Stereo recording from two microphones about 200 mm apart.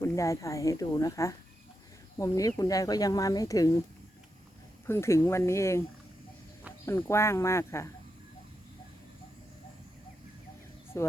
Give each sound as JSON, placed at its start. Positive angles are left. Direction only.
{"t": 0.0, "sound": "speech", "side_deg": 15}
{"t": 4.9, "sound": "speech", "side_deg": 15}
{"t": 6.8, "sound": "speech", "side_deg": 10}
{"t": 10.9, "sound": "speech", "side_deg": 15}